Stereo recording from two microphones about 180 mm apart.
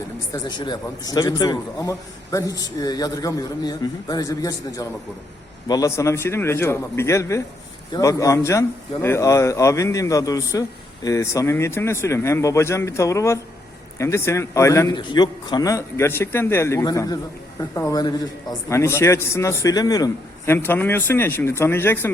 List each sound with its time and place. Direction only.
0.3 s a man's voice: 25° left (ahead or behind)